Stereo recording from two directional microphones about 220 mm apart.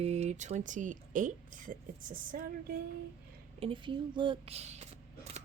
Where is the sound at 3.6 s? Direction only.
25° right (ahead or behind).